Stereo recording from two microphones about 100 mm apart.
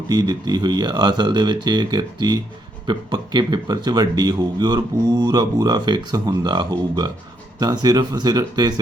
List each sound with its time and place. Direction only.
0.1 s speech: 45° right (ahead or behind)